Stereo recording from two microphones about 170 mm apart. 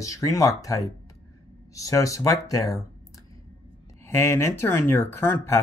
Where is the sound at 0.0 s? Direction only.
20° left (ahead or behind).